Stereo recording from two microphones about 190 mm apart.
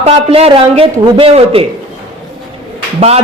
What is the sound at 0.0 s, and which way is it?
A man's voice, 30° right (ahead or behind).